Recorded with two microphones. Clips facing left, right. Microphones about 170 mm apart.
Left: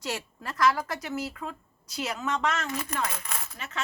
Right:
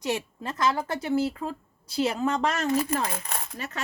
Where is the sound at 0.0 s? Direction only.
20° right (ahead or behind).